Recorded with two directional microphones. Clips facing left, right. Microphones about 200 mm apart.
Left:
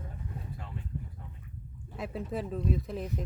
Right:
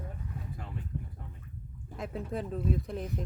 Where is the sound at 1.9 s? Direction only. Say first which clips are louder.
Left 1 dB; centre (ahead or behind).